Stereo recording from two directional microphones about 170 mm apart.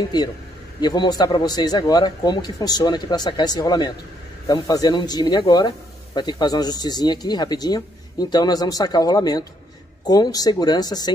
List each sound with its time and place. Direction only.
0.7 s speech: 25° left (ahead or behind)